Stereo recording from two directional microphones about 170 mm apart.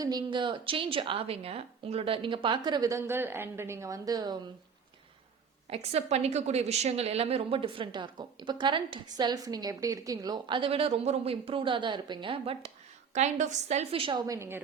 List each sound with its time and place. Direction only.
0.0 s a woman's voice: 25° right (ahead or behind)
5.7 s a woman's voice: 40° right (ahead or behind)
13.1 s a woman's voice: 45° right (ahead or behind); by 14.6 s 15° right (ahead or behind)